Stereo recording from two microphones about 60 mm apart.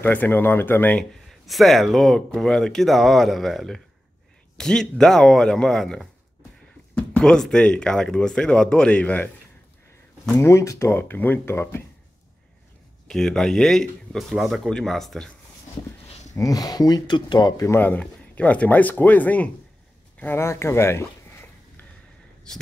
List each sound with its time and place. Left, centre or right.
0.0 s speech: left
1.3 s speech: centre
7.2 s speech: centre; by 9.3 s left
10.3 s speech: left
10.9 s speech: left
11.5 s speech: left
13.1 s speech: centre
14.1 s speech: centre
16.3 s speech: left
17.7 s speech: left
20.3 s speech: left